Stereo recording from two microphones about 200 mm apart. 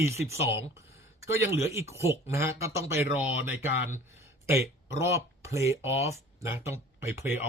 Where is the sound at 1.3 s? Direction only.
15° right (ahead or behind).